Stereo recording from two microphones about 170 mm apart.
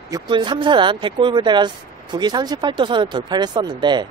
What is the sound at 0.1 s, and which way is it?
Speech, 25° right (ahead or behind).